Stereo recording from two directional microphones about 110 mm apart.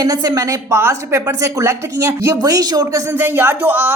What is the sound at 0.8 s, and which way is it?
Speech, 25° right (ahead or behind).